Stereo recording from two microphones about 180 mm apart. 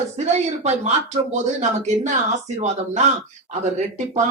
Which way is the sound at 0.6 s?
40° right (ahead or behind).